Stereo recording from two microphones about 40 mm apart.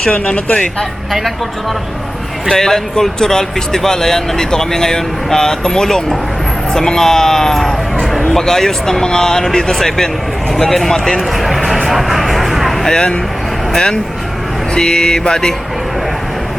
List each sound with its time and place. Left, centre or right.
0.1 s speech: left
0.5 s speech: centre
2.5 s speech: centre
11.3 s vehicle: centre
13.7 s speech: centre